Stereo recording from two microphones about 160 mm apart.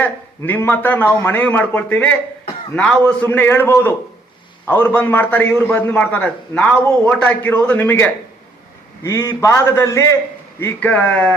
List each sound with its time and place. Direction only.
0.0 s a man's voice: 10° left (ahead or behind)